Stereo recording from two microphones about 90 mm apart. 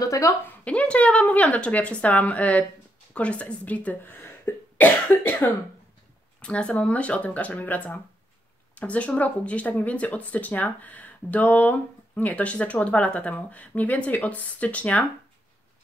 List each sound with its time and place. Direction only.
0.0 s speech: 35° left (ahead or behind)
0.7 s speech: 15° left (ahead or behind)
4.2 s cough: 25° left (ahead or behind)
6.4 s speech: 10° left (ahead or behind)